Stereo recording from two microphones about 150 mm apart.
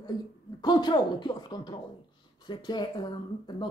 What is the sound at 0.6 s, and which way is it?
Speech, 30° left (ahead or behind).